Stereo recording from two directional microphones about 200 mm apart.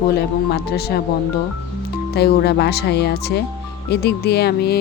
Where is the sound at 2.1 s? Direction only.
55° left (ahead or behind).